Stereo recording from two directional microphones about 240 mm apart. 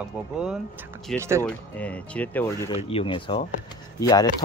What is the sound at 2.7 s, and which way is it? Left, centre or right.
Speech, left.